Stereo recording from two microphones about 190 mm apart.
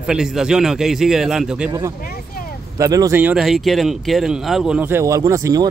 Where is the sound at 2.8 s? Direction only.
20° right (ahead or behind).